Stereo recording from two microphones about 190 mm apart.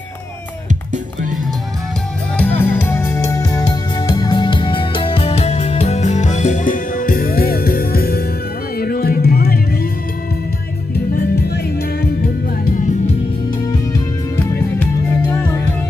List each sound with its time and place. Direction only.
2.3 s music: 10° left (ahead or behind); by 9.9 s 50° left (ahead or behind)
11.1 s music: 55° left (ahead or behind)